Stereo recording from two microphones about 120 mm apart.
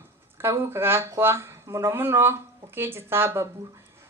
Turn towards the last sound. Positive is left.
turn(degrees=-20)  # may be behind; listen again after turning